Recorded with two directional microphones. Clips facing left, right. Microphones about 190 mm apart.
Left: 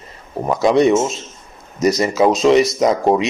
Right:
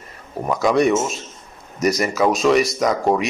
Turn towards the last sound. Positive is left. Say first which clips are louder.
# left 4 dB
turn(degrees=20)  # may be behind; listen again after turning